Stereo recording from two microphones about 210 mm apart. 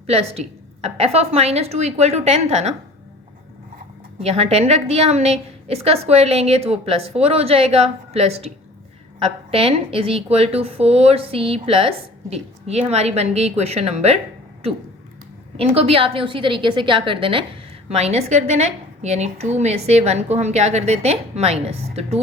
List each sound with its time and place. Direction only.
0.1 s a woman's voice: 30° right (ahead or behind)
4.2 s a woman's voice: 30° right (ahead or behind)
15.5 s a woman's voice: 30° right (ahead or behind)